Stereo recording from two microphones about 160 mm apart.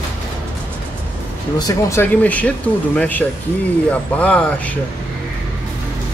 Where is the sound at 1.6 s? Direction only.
20° left (ahead or behind).